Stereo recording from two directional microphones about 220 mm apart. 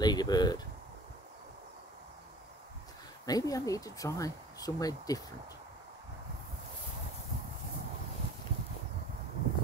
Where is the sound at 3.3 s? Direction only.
15° left (ahead or behind).